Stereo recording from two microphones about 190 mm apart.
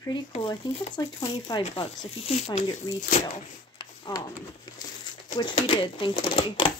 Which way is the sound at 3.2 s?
30° left (ahead or behind).